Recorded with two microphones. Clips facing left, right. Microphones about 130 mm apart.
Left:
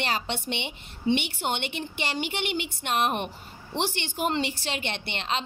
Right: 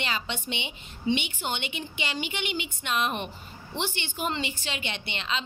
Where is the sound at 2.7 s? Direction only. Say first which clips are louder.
Left 3 dB; 65° left (ahead or behind).